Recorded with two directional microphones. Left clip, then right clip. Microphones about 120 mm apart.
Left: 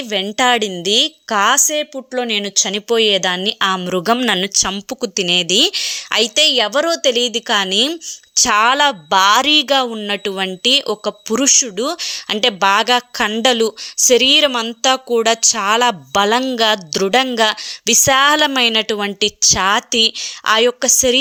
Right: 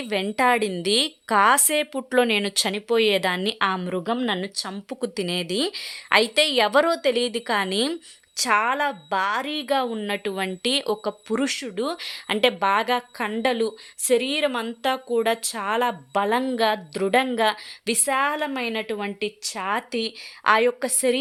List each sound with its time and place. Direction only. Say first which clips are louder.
0.1 s a woman's voice: left 6 dB; 10° left (ahead or behind)
1.6 s speech: left 5 dB; 5° right (ahead or behind)
2.7 s a woman's voice: left 7 dB; 20° left (ahead or behind)
4.9 s a woman's voice: left 10 dB; 20° left (ahead or behind)
6.9 s a woman's voice: left 7 dB; 15° left (ahead or behind)
8.4 s a woman's voice: left 9 dB; 35° left (ahead or behind)
17.9 s a woman's voice: left 11 dB; 45° left (ahead or behind)
19.7 s speech: left 12 dB; 25° left (ahead or behind)